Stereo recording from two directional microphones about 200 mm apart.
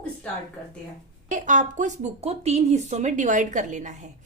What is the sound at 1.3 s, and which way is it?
A woman's voice, 40° right (ahead or behind).